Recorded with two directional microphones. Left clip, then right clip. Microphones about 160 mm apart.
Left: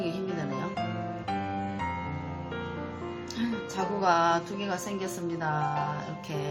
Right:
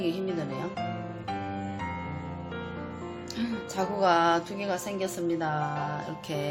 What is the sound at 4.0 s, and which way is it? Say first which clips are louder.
Music: right 1 dB; 45° right (ahead or behind).